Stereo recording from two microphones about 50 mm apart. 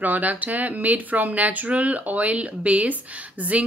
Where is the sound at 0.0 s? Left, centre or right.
Right.